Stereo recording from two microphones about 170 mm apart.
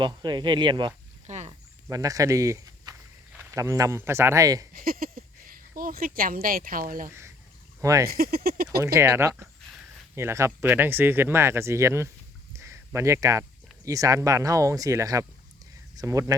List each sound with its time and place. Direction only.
0.0 s speech: 25° right (ahead or behind)
1.3 s a sound: 45° right (ahead or behind)
1.9 s speech: 20° right (ahead or behind)
4.7 s speech: 55° right (ahead or behind)
7.1 s a sound: 15° right (ahead or behind)
7.8 s speech: 20° right (ahead or behind)
8.0 s speech: 60° right (ahead or behind)
9.0 s speech: 15° right (ahead or behind)
12.5 s a sound: 15° right (ahead or behind)
13.8 s speech: 20° right (ahead or behind)